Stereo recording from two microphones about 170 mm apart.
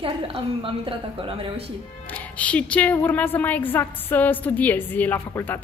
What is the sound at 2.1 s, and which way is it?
A woman's voice, 10° left (ahead or behind).